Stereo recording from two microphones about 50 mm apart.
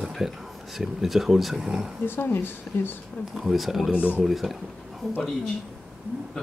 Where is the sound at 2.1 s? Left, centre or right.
Left.